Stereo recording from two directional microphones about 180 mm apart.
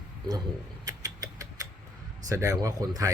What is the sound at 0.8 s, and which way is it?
Mechanisms, 20° right (ahead or behind).